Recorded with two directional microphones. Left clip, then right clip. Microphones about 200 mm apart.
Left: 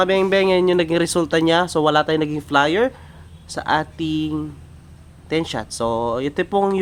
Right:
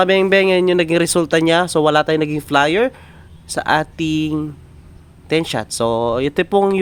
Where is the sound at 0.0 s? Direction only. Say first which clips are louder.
Right 3 dB; 35° right (ahead or behind).